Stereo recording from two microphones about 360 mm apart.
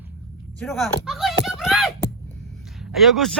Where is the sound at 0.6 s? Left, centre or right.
Centre.